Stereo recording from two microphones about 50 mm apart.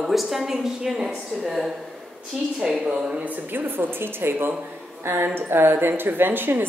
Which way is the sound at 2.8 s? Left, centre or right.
Centre.